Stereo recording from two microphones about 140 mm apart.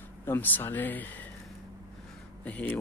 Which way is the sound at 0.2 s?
15° left (ahead or behind).